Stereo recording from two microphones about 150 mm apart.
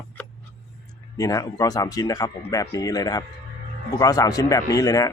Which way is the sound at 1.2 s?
25° left (ahead or behind).